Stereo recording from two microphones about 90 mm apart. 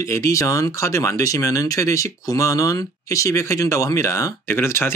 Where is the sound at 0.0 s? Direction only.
35° left (ahead or behind).